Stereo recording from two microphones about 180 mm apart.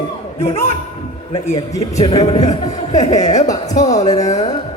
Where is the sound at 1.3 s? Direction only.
35° left (ahead or behind).